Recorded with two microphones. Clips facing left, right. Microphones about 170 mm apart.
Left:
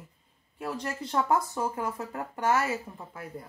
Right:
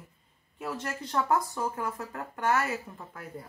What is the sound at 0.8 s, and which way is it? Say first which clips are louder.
Speech: left 1 dB; 20° left (ahead or behind).